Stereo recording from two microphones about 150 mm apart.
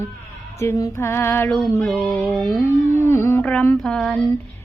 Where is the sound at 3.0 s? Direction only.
15° left (ahead or behind).